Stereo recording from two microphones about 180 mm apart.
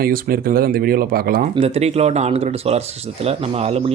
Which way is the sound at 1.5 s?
35° right (ahead or behind).